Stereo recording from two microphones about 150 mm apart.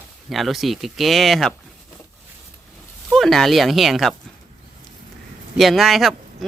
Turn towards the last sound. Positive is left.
turn(degrees=0)  # may be behind; listen again after turning